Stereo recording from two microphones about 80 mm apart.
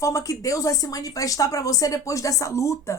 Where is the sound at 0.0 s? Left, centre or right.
Left.